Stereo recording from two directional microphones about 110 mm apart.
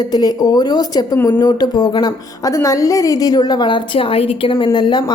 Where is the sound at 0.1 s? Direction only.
35° left (ahead or behind).